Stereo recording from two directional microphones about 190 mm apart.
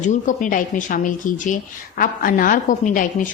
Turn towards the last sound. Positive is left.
turn(degrees=45)  # may be behind; listen again after turning